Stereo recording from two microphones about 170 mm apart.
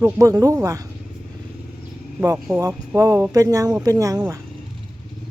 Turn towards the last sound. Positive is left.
turn(degrees=-10)  # may be behind; listen again after turning